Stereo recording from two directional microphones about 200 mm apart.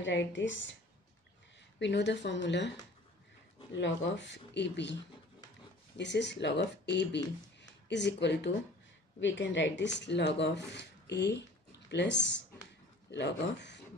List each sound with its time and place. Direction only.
0.0 s speech: 65° left (ahead or behind)
1.8 s speech: 60° left (ahead or behind)
3.7 s speech: 65° left (ahead or behind)
5.9 s speech: 60° left (ahead or behind)